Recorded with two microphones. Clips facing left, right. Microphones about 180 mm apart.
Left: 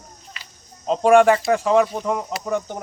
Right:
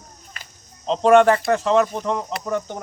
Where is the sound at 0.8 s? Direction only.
10° left (ahead or behind).